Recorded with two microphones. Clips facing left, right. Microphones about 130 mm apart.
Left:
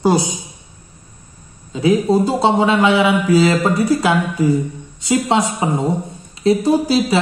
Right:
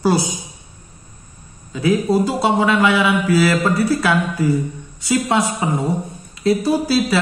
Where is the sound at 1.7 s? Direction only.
20° left (ahead or behind).